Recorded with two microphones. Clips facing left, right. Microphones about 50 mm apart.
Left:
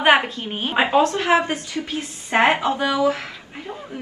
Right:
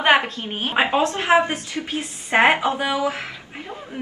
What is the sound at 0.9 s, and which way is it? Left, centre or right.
A woman's voice, right.